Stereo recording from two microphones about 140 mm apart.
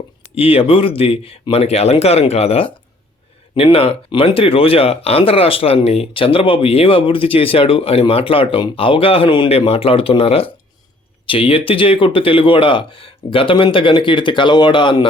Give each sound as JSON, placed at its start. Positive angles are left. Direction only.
{"t": 0.3, "sound": "speech", "side_deg": 40}